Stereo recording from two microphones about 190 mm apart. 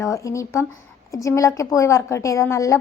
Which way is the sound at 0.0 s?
15° left (ahead or behind).